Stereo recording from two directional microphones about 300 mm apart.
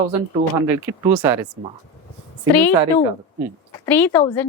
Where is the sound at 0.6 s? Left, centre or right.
Centre.